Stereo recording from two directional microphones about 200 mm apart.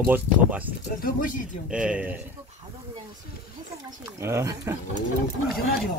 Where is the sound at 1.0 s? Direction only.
45° left (ahead or behind).